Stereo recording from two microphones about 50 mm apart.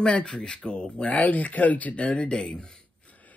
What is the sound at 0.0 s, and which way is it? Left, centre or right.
Speech, centre.